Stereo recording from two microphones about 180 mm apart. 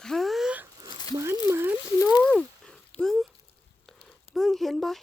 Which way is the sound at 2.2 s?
5° left (ahead or behind).